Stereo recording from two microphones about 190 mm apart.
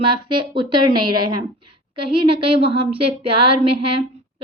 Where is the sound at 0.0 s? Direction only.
25° right (ahead or behind).